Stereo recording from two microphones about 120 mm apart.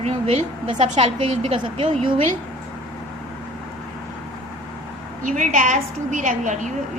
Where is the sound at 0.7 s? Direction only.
70° right (ahead or behind).